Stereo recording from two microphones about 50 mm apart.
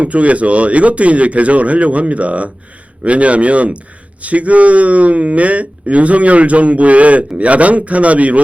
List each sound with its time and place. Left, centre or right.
0.0 s speech: right